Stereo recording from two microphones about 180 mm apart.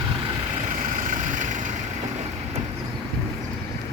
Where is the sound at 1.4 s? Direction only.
45° right (ahead or behind).